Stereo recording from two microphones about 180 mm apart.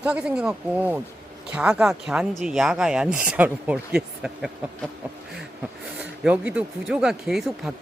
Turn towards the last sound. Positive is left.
turn(degrees=0)  # may be behind; listen again after turning